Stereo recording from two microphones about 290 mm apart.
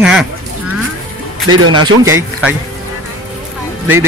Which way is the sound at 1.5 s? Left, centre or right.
Right.